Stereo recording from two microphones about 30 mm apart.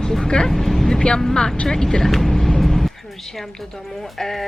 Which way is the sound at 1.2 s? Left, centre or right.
Centre.